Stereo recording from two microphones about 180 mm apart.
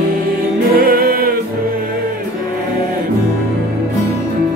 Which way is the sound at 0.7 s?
55° right (ahead or behind).